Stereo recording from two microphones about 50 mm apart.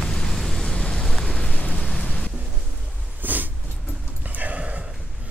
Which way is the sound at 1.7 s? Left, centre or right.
Centre.